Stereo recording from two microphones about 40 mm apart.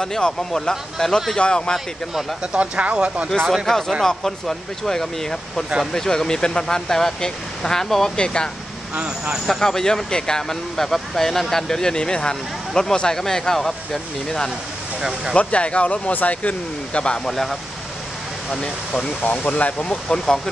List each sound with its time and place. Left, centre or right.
0.0 s speech: centre
2.4 s speech: right
3.3 s speech: centre
9.5 s speech: centre
15.0 s speech: centre
15.3 s speech: left
17.2 s speech: centre
18.5 s speech: left
19.4 s speech: left